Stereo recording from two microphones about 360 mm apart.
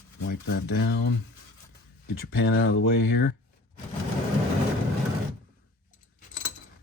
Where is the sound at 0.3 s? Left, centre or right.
Left.